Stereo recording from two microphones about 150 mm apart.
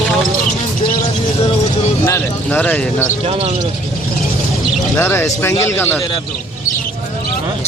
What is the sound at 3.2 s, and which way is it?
Speech, 40° right (ahead or behind).